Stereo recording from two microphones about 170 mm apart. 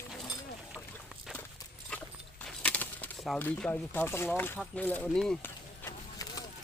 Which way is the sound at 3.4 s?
10° left (ahead or behind).